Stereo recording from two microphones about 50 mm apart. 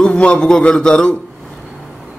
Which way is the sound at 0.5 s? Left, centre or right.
Centre.